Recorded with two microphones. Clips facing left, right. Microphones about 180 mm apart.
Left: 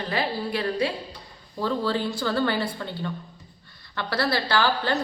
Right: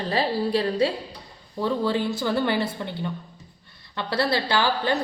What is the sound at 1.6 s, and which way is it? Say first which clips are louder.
A woman's voice: right 2 dB; 20° right (ahead or behind).